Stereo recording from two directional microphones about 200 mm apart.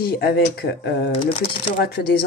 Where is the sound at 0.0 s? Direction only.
50° left (ahead or behind).